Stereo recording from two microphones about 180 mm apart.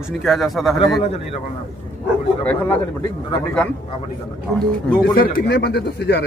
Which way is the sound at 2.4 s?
5° left (ahead or behind).